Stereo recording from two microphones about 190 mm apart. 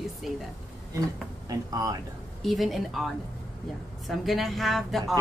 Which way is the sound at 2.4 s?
Centre (ahead or behind).